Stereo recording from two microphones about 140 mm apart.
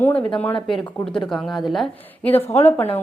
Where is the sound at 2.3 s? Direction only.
50° left (ahead or behind).